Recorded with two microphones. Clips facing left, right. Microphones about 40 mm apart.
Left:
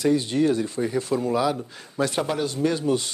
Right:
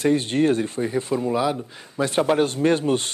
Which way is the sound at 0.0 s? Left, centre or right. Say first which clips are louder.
Right 1 dB; right.